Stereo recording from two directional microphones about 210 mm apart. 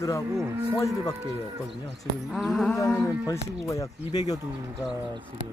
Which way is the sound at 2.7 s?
10° left (ahead or behind).